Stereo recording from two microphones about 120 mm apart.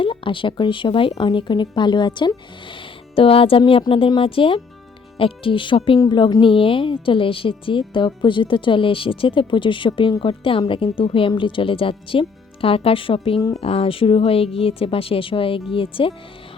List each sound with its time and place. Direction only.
0.0 s a woman's voice: 45° left (ahead or behind)
3.2 s a woman's voice: 50° left (ahead or behind)